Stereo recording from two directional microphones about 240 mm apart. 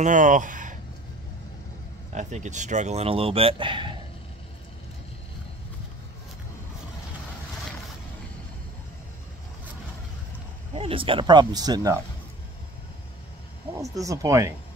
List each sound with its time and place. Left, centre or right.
0.0 s speech: right
2.1 s speech: right
10.7 s speech: right
13.7 s speech: centre